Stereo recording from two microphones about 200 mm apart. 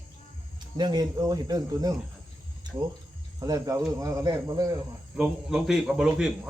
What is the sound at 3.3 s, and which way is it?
Speech, 15° right (ahead or behind).